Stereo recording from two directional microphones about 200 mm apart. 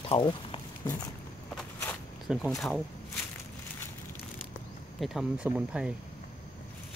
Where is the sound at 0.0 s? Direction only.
25° left (ahead or behind).